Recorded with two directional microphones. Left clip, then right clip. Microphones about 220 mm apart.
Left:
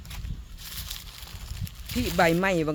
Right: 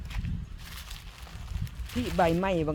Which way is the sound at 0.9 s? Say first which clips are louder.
Left 6 dB; 20° left (ahead or behind).